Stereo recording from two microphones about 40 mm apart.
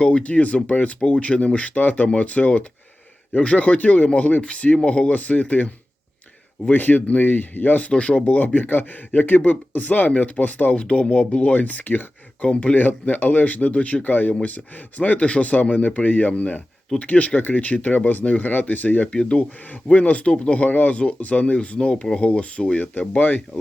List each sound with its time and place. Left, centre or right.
0.0 s speech: left
1.8 s speech: left
2.0 s speech: left
7.9 s speech: left
8.5 s speech: left
10.8 s speech: left
12.5 s speech: left
12.7 s speech: left
14.1 s speech: left
19.1 s speech: left
19.4 s speech: left